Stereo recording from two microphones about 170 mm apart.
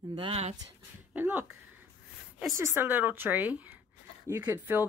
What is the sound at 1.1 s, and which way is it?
Speech, 10° right (ahead or behind).